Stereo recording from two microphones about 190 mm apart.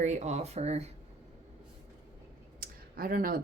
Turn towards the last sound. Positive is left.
turn(degrees=-50)  # may be behind; listen again after turning